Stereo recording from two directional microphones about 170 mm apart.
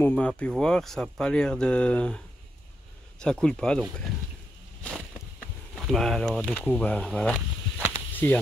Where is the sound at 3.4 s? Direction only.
5° left (ahead or behind).